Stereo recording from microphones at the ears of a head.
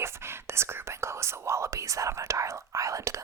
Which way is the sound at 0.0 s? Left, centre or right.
Right.